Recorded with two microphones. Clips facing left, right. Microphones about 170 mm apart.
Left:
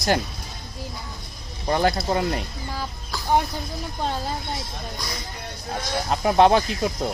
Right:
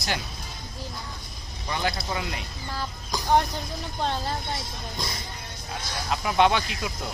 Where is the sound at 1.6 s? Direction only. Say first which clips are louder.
Left 8 dB; 45° left (ahead or behind).